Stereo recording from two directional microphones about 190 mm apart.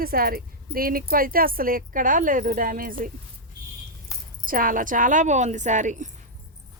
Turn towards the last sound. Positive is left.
turn(degrees=-40)  # may be behind; listen again after turning